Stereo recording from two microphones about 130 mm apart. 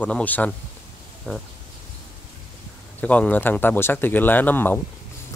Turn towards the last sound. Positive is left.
turn(degrees=15)  # may be behind; listen again after turning